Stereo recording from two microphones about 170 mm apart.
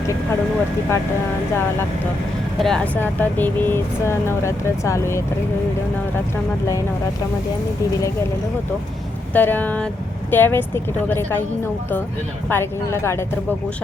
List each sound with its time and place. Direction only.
2.6 s speech: 5° left (ahead or behind)
9.3 s speech: 10° left (ahead or behind)
12.5 s speech: 15° left (ahead or behind)